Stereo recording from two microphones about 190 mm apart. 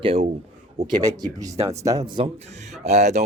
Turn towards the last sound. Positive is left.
turn(degrees=-35)  # may be behind; listen again after turning